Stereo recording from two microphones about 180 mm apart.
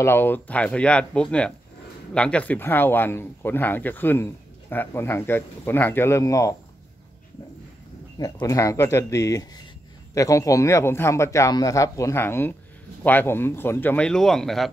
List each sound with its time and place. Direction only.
0.0 s speech: 10° left (ahead or behind)
8.2 s speech: 20° left (ahead or behind); by 14.7 s centre (ahead or behind)